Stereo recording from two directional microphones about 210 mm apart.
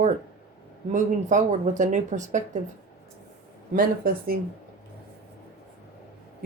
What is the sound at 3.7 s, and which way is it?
Speech, 45° right (ahead or behind).